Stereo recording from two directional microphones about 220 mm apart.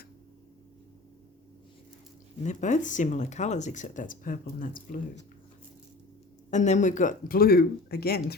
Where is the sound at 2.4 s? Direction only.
35° left (ahead or behind).